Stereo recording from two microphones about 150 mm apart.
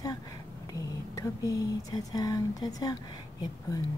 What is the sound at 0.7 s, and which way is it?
Speech, 25° left (ahead or behind).